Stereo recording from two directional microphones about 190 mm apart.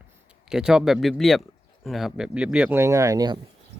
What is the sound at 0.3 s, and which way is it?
Speech, 5° right (ahead or behind).